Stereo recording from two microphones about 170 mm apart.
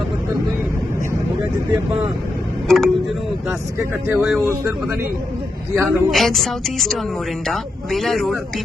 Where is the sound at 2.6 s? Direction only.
Centre (ahead or behind).